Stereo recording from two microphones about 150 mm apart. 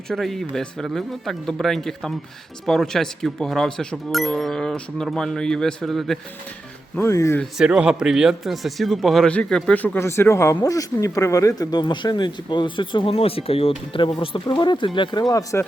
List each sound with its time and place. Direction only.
0.1 s speech: centre (ahead or behind)
7.0 s speech: 20° left (ahead or behind)
7.6 s speech: 5° right (ahead or behind); by 15.6 s 25° left (ahead or behind)